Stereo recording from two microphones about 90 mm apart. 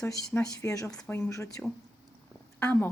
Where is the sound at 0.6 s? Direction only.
40° left (ahead or behind).